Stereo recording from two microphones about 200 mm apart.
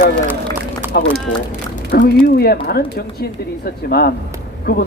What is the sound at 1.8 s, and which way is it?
Speech, 55° left (ahead or behind).